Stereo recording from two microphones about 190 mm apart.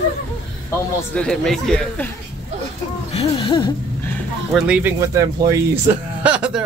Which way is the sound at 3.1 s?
25° left (ahead or behind).